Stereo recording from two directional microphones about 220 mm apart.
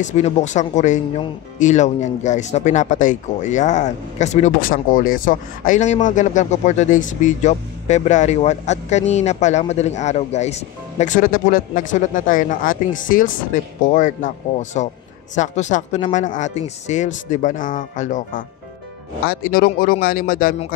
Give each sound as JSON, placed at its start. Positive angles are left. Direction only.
{"t": 0.0, "sound": "speech", "side_deg": 30}